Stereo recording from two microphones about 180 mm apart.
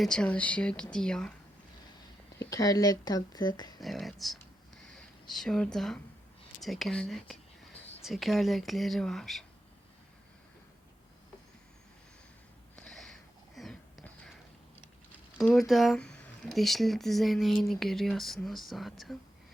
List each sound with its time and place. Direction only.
0.0 s speech: 5° left (ahead or behind)
2.4 s speech: 20° left (ahead or behind)
3.8 s speech: centre (ahead or behind)
12.7 s a sound: 5° left (ahead or behind)
15.4 s speech: centre (ahead or behind)